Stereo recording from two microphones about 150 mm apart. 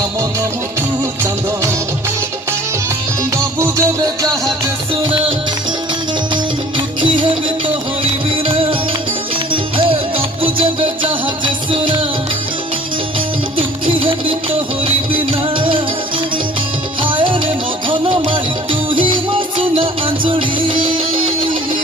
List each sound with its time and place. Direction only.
3.2 s music: 20° right (ahead or behind)
6.3 s music: 35° right (ahead or behind)
13.1 s music: 35° right (ahead or behind)